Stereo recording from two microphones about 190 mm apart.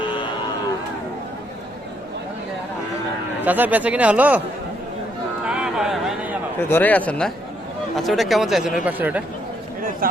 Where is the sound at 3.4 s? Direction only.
10° right (ahead or behind).